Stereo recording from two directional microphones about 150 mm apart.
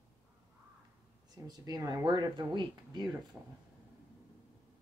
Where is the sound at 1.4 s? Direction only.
25° right (ahead or behind).